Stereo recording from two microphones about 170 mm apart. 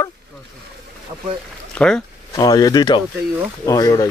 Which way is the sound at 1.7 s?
5° left (ahead or behind).